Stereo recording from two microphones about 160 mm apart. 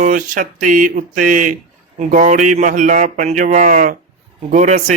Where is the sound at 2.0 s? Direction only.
55° right (ahead or behind).